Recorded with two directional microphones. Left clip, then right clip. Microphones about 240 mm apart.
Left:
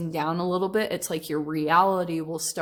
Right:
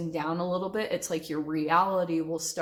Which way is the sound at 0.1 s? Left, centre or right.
Left.